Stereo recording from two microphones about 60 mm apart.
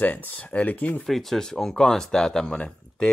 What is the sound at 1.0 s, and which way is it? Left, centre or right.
Speech, centre.